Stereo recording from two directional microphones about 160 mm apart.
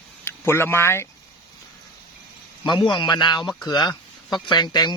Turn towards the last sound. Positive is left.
turn(degrees=25)  # may be behind; listen again after turning